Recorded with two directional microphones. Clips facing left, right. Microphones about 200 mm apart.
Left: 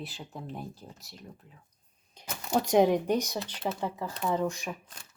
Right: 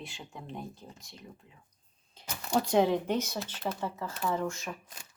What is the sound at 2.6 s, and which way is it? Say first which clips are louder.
Speech: left 3 dB; 15° left (ahead or behind).